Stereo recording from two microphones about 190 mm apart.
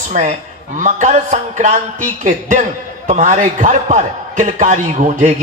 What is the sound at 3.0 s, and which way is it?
A man's voice, 40° right (ahead or behind).